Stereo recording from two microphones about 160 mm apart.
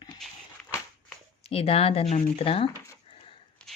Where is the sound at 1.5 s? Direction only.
35° left (ahead or behind).